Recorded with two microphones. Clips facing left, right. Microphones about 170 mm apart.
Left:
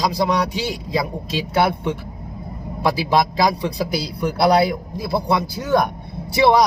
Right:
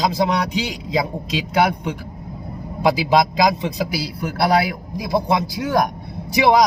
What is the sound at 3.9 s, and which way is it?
A man's voice, 5° right (ahead or behind).